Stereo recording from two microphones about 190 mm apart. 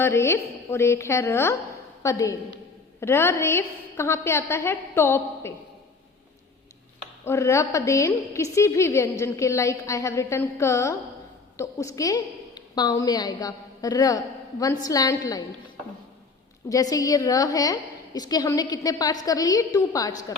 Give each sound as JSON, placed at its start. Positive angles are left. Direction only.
{"t": 0.0, "sound": "a woman's voice", "side_deg": 15}
{"t": 7.3, "sound": "a woman's voice", "side_deg": 15}
{"t": 16.6, "sound": "a woman's voice", "side_deg": 20}